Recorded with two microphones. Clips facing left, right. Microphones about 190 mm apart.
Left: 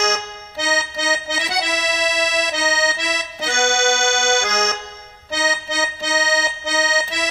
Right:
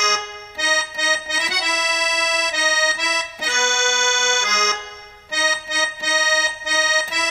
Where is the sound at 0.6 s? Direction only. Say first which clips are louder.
Left 4 dB; 60° left (ahead or behind).